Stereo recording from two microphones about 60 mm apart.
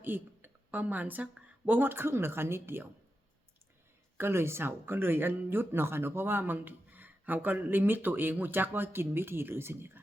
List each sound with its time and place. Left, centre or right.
0.0 s speech: right
4.2 s speech: right